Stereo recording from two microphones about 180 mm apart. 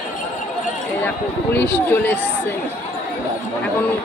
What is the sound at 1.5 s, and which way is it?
Speech, 10° left (ahead or behind).